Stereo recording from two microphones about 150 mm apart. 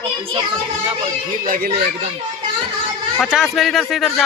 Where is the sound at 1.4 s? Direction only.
80° right.